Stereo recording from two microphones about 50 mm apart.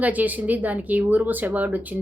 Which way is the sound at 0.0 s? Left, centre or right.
Right.